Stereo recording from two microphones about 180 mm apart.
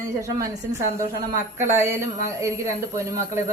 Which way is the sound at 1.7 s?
15° right (ahead or behind).